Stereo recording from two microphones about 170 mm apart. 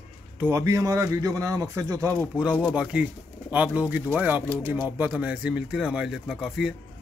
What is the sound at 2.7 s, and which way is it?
Speech, 5° right (ahead or behind).